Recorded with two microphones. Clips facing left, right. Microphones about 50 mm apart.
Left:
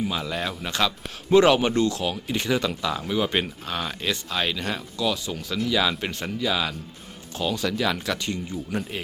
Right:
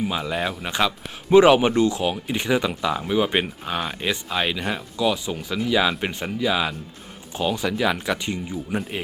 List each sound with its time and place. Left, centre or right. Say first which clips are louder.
0.0 s speech: right 3 dB; centre